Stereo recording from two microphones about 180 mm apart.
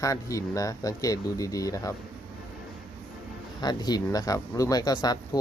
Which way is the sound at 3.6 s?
25° left (ahead or behind).